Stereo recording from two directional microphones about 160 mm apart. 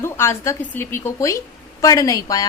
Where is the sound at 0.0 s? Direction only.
15° left (ahead or behind).